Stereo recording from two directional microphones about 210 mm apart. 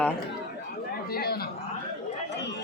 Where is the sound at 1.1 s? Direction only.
45° left (ahead or behind).